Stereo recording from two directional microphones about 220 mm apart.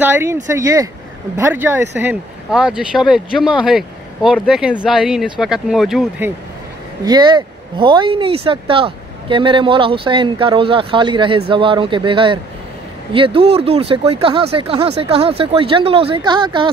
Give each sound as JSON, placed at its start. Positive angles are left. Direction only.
{"t": 0.0, "sound": "speech", "side_deg": -10}
{"t": 7.1, "sound": "speech", "side_deg": -20}